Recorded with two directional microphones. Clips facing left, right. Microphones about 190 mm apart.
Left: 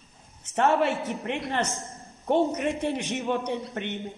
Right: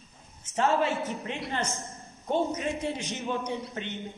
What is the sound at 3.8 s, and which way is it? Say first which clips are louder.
Speech: left 4 dB; 60° left (ahead or behind).